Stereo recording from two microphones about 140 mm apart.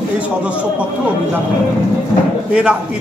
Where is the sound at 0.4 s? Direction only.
10° right (ahead or behind).